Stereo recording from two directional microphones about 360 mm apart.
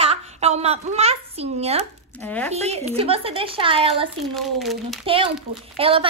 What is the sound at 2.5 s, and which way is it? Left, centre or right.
A woman's voice, centre.